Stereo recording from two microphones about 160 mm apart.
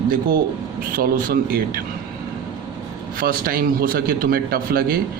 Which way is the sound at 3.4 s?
65° right (ahead or behind).